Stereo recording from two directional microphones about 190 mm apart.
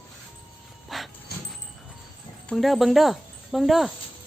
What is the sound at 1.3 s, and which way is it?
Vehicle, 55° left (ahead or behind).